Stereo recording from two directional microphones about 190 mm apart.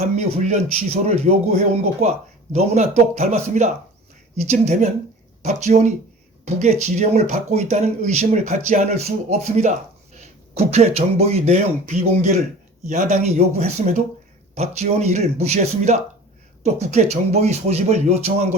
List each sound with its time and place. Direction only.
0.3 s speech: 35° right (ahead or behind)
10.5 s speech: 35° right (ahead or behind)